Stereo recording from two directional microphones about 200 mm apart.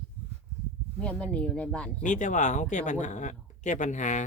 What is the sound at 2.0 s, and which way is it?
Speech, 40° left (ahead or behind).